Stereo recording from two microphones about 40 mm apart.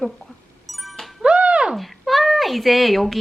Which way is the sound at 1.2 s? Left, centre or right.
Right.